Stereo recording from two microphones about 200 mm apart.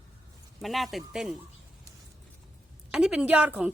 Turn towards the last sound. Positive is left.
turn(degrees=-5)  # may be behind; listen again after turning